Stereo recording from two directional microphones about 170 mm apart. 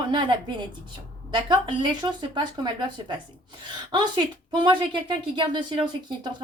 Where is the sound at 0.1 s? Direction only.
25° right (ahead or behind).